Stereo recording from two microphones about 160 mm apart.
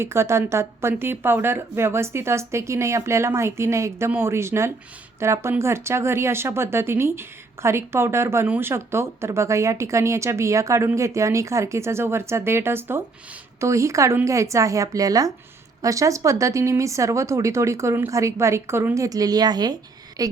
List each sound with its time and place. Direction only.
0.0 s speech: 15° right (ahead or behind)